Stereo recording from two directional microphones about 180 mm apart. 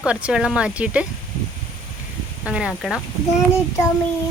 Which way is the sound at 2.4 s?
5° right (ahead or behind).